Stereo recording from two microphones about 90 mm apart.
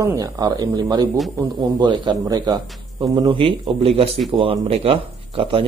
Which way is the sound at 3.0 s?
60° right (ahead or behind).